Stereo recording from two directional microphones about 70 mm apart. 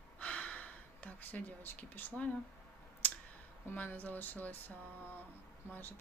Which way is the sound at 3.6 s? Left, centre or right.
Left.